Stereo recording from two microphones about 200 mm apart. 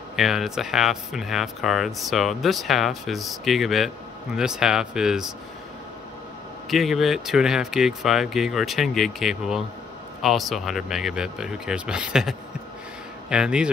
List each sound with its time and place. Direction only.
0.1 s speech: centre (ahead or behind)
6.7 s speech: centre (ahead or behind)